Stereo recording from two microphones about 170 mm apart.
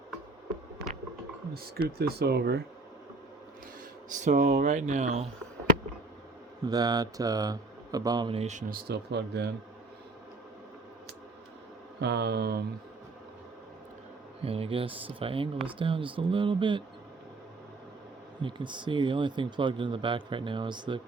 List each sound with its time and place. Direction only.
2.0 s speech: 70° right (ahead or behind)
4.1 s speech: 45° right (ahead or behind)
6.7 s speech: 25° right (ahead or behind)
8.4 s speech: 45° right (ahead or behind); by 9.5 s 90° right
11.9 s speech: 80° right
14.4 s speech: 35° right (ahead or behind)
18.4 s speech: 25° right (ahead or behind)